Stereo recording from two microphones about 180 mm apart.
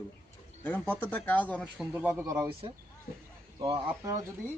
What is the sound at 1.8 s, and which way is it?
Speech, 5° right (ahead or behind).